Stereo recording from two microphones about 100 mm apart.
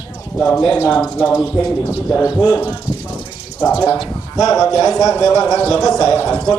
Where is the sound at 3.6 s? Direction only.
15° left (ahead or behind).